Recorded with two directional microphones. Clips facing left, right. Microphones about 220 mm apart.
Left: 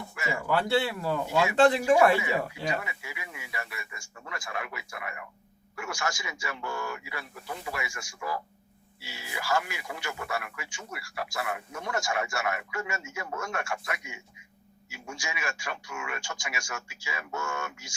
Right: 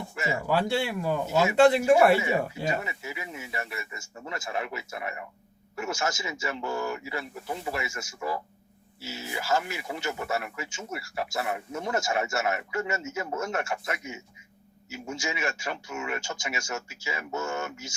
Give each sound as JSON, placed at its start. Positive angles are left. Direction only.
{"t": 0.2, "sound": "speech", "side_deg": -25}
{"t": 2.2, "sound": "a man's voice", "side_deg": -25}